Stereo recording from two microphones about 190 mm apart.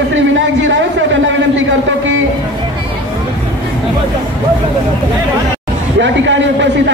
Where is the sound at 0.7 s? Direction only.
70° right (ahead or behind).